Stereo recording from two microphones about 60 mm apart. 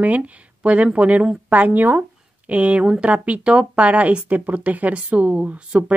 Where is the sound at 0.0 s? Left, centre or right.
Right.